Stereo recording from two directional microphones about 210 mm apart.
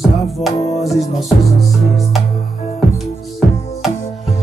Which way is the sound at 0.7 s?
Centre (ahead or behind).